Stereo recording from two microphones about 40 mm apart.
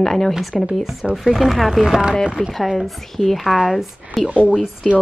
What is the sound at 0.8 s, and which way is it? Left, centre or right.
Speech, centre.